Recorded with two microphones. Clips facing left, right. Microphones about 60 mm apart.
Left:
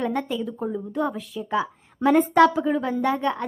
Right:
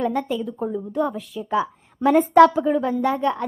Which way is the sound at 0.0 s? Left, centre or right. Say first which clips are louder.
Right 2 dB; centre.